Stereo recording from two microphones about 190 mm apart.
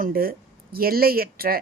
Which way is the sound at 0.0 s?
50° right (ahead or behind).